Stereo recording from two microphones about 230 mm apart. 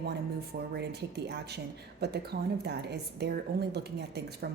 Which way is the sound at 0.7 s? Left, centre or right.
Right.